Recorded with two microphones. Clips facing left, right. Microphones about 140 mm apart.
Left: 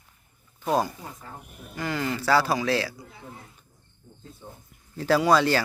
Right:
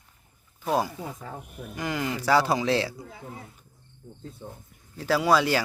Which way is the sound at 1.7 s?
15° right (ahead or behind).